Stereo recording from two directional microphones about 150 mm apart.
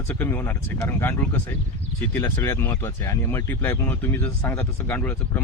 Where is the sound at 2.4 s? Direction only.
15° left (ahead or behind).